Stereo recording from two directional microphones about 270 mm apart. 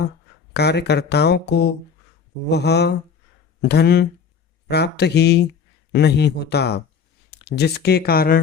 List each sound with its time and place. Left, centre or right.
0.5 s speech: left